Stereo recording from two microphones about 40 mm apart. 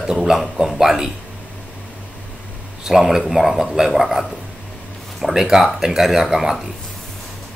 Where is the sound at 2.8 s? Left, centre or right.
Centre.